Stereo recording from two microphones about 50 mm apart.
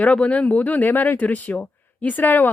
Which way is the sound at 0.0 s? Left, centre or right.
Left.